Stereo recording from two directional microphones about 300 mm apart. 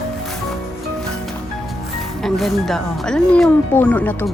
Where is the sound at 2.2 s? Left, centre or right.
Centre.